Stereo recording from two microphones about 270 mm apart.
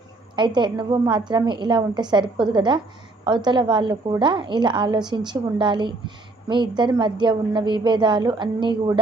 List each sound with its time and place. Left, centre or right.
0.3 s a woman's voice: centre